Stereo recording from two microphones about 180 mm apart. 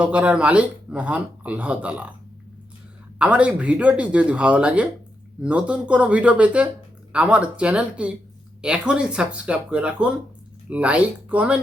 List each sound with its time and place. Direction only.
0.0 s speech: 5° right (ahead or behind)
3.2 s speech: 5° right (ahead or behind)